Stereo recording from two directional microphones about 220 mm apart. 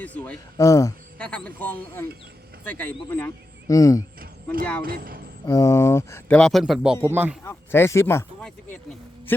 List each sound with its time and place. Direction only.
0.0 s speech: 5° left (ahead or behind)
4.8 s speech: 40° right (ahead or behind)
5.5 s speech: 15° left (ahead or behind); by 7.3 s 10° right (ahead or behind)
7.4 s speech: 10° left (ahead or behind)